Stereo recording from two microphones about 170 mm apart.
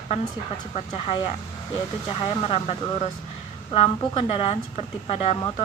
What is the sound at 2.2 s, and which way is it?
Speech, 35° left (ahead or behind).